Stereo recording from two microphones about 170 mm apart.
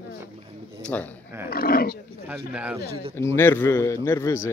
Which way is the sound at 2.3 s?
10° right (ahead or behind).